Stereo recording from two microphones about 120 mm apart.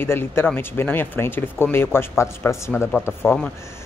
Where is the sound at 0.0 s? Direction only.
20° left (ahead or behind).